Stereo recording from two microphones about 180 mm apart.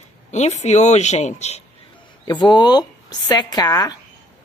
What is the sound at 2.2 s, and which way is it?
A woman's voice, 25° left (ahead or behind).